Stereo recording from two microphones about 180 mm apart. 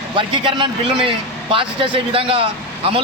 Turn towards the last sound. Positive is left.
turn(degrees=-30)  # may be behind; listen again after turning